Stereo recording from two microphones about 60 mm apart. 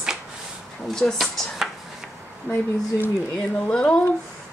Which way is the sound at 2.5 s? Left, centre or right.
Left.